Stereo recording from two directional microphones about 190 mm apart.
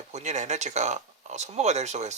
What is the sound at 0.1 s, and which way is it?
Speech, 35° right (ahead or behind).